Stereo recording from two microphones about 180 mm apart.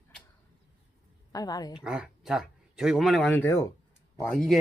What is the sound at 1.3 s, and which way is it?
Speech, 20° left (ahead or behind).